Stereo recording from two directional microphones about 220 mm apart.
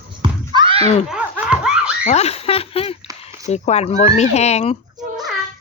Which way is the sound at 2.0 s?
30° left (ahead or behind).